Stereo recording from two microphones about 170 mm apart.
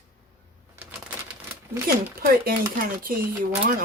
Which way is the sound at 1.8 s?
60° right (ahead or behind).